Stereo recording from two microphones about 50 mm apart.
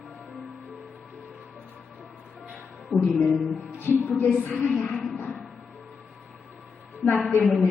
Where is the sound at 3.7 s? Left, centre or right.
Left.